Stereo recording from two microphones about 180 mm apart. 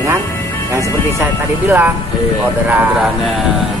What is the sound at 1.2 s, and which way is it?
Speech, 10° right (ahead or behind).